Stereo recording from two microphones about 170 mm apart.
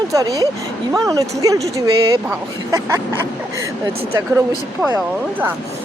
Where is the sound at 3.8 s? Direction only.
15° right (ahead or behind).